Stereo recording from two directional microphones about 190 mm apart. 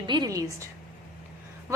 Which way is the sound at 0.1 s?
20° right (ahead or behind).